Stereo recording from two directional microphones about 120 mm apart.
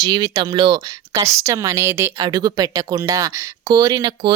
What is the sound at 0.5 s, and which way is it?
Speech, 40° right (ahead or behind).